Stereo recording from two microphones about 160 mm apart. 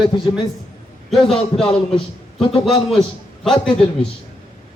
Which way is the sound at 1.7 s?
30° left (ahead or behind).